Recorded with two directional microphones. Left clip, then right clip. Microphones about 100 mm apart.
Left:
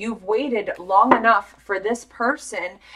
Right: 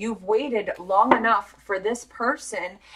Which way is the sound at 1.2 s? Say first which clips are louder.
Left 4 dB; 30° left (ahead or behind).